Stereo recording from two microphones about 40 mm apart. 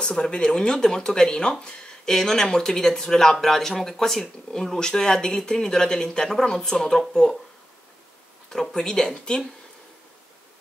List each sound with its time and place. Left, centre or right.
0.0 s speech: centre
8.5 s speech: centre